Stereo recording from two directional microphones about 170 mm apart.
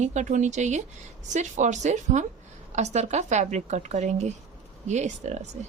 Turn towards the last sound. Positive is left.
turn(degrees=-40)  # may be behind; listen again after turning